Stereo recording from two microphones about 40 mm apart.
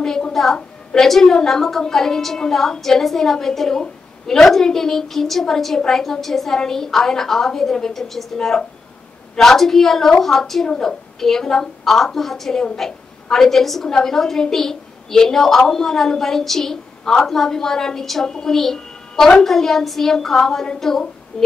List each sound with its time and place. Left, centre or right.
0.3 s a sound: centre
0.9 s a woman's voice: centre
8.4 s a woman's voice: centre